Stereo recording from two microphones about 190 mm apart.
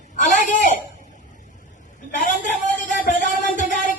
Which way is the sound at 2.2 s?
40° left (ahead or behind).